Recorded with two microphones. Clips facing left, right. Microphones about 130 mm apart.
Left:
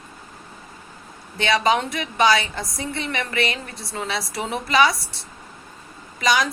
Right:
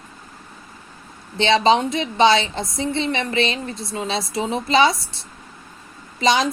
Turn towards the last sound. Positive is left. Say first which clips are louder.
# right 3 dB
turn(degrees=-25)  # may be behind; listen again after turning